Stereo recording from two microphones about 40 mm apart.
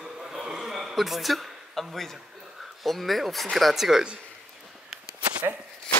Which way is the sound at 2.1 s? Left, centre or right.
Centre.